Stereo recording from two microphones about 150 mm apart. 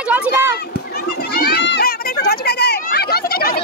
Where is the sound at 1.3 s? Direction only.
90° left.